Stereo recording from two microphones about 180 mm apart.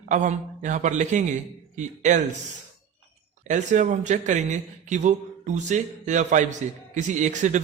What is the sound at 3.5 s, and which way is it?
Speech, 45° right (ahead or behind).